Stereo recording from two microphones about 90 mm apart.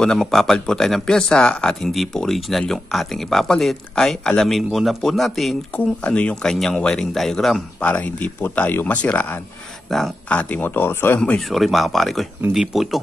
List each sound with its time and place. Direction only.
0.0 s speech: 5° left (ahead or behind)
5.8 s speech: 15° left (ahead or behind)
7.8 s speech: 15° left (ahead or behind)
9.8 s speech: 5° left (ahead or behind)
10.3 s speech: 20° left (ahead or behind)
11.1 s speech: 10° left (ahead or behind)
11.4 s speech: centre (ahead or behind)